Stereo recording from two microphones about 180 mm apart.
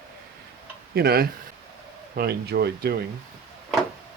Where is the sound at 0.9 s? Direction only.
60° right (ahead or behind).